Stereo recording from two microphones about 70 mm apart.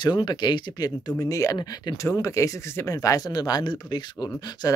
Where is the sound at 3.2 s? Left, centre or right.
Left.